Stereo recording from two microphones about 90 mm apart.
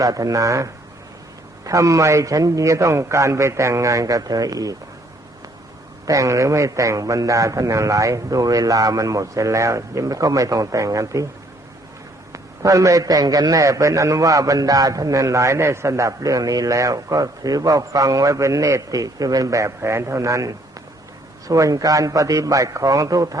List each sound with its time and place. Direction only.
0.0 s a man's voice: 40° right (ahead or behind)
6.1 s a man's voice: 35° right (ahead or behind)
12.3 s a man's voice: 35° right (ahead or behind)